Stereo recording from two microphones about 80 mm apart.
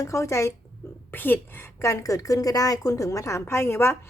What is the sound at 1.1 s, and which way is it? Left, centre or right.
Speech, left.